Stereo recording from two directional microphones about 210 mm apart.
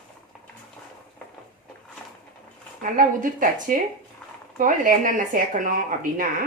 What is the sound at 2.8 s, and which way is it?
Speech, 40° right (ahead or behind).